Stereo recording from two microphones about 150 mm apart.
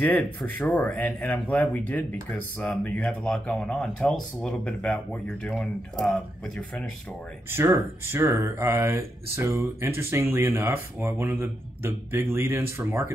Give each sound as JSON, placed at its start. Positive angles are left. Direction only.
{"t": 0.0, "sound": "a man's voice", "side_deg": 10}
{"t": 7.5, "sound": "speech", "side_deg": -15}